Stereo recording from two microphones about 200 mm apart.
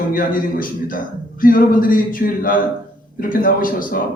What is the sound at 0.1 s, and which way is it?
A man's voice, 45° left (ahead or behind).